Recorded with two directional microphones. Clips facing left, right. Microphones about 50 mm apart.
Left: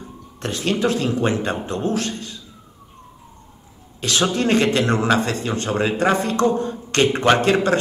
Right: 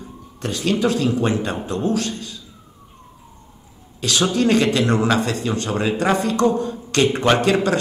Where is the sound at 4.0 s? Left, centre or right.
Left.